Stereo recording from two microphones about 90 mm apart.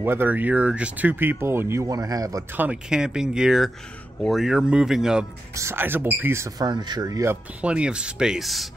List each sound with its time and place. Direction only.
0.0 s speech: 20° right (ahead or behind)
1.9 s speech: 45° right (ahead or behind)
2.5 s speech: 20° right (ahead or behind)
2.9 s speech: 10° right (ahead or behind)
5.5 s speech: 30° right (ahead or behind)
6.6 s speech: 55° right (ahead or behind)
7.6 s speech: 10° right (ahead or behind)